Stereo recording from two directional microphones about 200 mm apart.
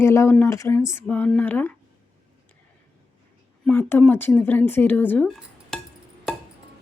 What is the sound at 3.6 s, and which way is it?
Speech, 10° left (ahead or behind).